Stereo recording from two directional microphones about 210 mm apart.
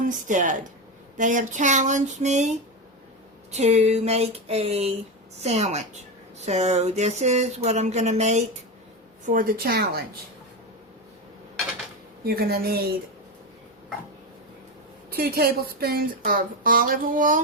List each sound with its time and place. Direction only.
0.0 s speech: 35° right (ahead or behind)
3.5 s a sound: 30° right (ahead or behind)
5.4 s speech: 30° right (ahead or behind); by 10.0 s 45° right (ahead or behind)
12.2 s speech: 45° right (ahead or behind)
15.1 s speech: 45° right (ahead or behind)